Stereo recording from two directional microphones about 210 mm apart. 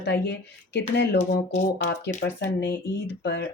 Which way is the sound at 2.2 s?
55° left (ahead or behind).